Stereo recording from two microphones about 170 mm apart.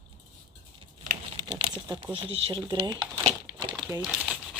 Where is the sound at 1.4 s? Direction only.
25° right (ahead or behind).